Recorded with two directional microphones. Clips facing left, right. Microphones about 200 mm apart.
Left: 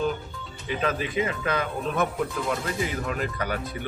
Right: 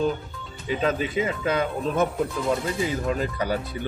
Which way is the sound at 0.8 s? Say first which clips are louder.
Right 2 dB; 25° right (ahead or behind).